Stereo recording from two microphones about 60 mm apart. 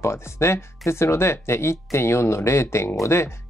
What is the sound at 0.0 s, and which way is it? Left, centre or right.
Speech, left.